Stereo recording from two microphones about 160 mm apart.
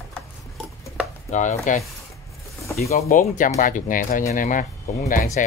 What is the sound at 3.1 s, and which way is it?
Speech, 55° left (ahead or behind).